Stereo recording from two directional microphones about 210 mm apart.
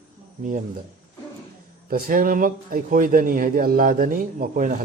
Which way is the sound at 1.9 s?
45° right (ahead or behind).